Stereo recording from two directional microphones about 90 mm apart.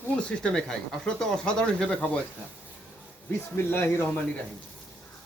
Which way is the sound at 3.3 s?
25° left (ahead or behind).